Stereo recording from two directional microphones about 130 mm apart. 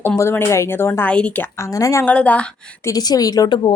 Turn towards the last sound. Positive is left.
turn(degrees=35)  # may be behind; listen again after turning